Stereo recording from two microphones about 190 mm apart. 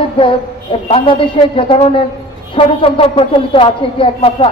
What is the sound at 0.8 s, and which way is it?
A woman's voice, 30° left (ahead or behind).